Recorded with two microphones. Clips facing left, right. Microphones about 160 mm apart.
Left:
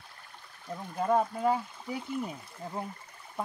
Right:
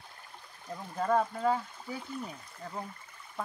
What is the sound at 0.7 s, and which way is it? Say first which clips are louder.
Speech: left 1 dB; 10° left (ahead or behind).